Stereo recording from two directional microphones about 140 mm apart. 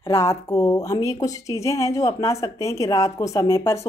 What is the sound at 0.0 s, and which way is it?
A woman's voice, 20° left (ahead or behind).